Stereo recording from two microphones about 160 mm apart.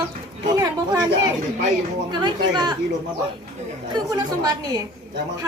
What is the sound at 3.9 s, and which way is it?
Speech, 25° right (ahead or behind).